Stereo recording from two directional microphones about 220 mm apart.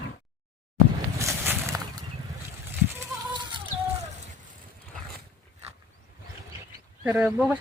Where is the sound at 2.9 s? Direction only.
20° right (ahead or behind).